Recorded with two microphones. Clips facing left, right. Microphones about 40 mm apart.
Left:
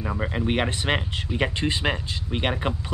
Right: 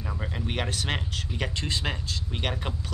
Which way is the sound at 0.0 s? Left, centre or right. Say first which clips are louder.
Left 7 dB; left.